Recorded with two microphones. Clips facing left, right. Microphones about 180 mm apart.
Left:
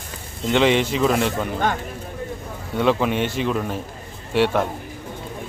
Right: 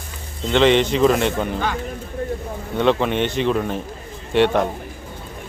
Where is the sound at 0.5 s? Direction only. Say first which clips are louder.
Right 3 dB; 10° left (ahead or behind).